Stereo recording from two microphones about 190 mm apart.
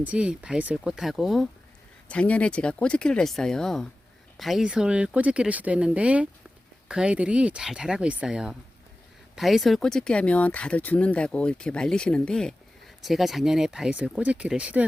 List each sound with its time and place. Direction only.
0.0 s speech: 5° right (ahead or behind)